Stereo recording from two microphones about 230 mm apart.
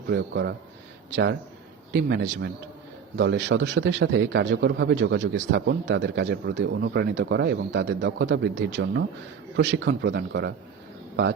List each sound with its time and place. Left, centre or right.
0.1 s a man's voice: right